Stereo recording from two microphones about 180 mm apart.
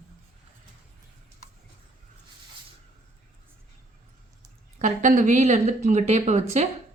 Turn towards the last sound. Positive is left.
turn(degrees=-40)  # may be behind; listen again after turning